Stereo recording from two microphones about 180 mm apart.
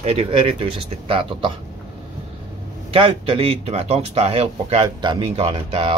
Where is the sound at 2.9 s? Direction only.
30° right (ahead or behind).